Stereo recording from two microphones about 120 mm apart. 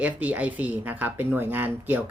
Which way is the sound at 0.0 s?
10° right (ahead or behind).